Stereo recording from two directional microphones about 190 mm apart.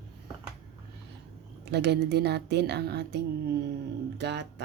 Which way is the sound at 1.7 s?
60° right (ahead or behind).